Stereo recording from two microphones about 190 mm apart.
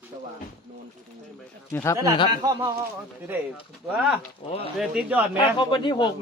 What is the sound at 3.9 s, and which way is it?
Speech, 5° right (ahead or behind).